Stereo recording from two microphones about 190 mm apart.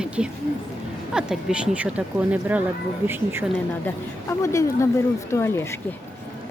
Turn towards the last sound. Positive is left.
turn(degrees=15)  # may be behind; listen again after turning